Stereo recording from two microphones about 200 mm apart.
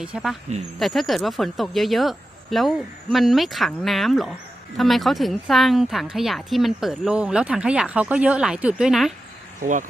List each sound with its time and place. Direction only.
0.0 s a woman's voice: 5° right (ahead or behind)
9.6 s speech: 40° right (ahead or behind)